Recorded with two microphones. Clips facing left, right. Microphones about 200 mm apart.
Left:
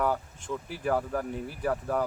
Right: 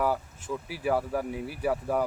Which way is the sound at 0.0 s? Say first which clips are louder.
Right 1 dB; 5° right (ahead or behind).